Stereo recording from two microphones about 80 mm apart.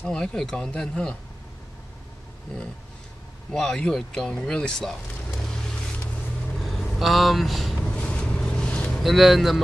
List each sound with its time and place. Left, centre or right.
0.0 s speech: centre
3.5 s speech: centre
5.4 s vehicle: centre
7.8 s vehicle: centre
9.0 s speech: centre